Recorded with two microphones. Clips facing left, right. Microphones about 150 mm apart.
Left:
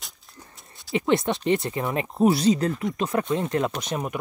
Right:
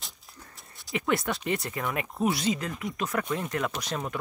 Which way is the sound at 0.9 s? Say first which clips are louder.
Left 6 dB; 25° left (ahead or behind).